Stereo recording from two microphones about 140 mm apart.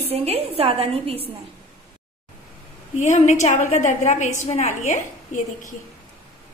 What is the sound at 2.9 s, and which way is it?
A woman's voice, 55° left (ahead or behind).